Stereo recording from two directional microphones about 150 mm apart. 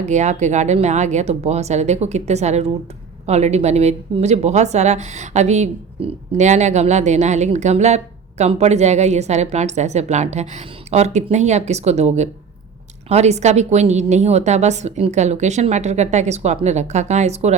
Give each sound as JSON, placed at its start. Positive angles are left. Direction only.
{"t": 0.0, "sound": "speech", "side_deg": -50}